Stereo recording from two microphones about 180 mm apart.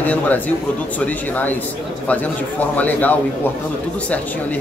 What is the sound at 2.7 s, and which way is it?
Speech, 10° left (ahead or behind).